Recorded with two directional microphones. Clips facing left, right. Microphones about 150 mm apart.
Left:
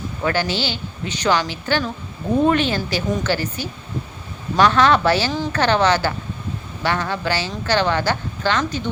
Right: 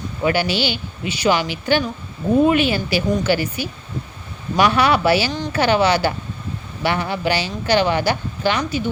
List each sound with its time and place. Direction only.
0.2 s a woman's voice: 15° right (ahead or behind)